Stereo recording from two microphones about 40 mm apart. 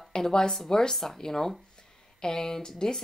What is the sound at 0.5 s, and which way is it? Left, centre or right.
Speech, centre.